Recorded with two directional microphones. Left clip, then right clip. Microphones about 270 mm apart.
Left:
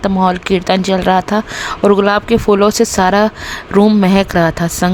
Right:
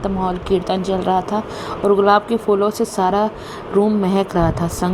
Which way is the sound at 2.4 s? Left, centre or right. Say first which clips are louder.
Left 6 dB; left.